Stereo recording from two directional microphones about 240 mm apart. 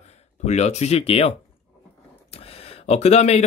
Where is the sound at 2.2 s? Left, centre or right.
Left.